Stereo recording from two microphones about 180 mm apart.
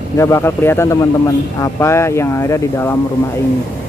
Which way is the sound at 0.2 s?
15° left (ahead or behind).